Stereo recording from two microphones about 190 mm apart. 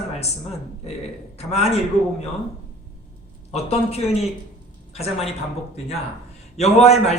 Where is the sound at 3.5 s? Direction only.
35° left (ahead or behind).